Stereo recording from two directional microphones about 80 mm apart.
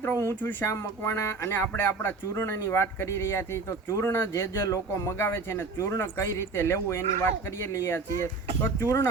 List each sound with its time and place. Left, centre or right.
0.3 s speech: left